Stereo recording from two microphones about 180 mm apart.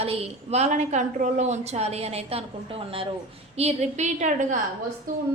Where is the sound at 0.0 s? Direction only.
35° right (ahead or behind).